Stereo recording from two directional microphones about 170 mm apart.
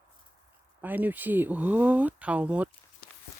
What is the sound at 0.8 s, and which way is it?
Speech, 10° right (ahead or behind).